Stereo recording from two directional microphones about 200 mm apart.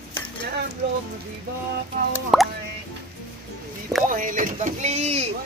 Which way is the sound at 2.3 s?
Centre (ahead or behind).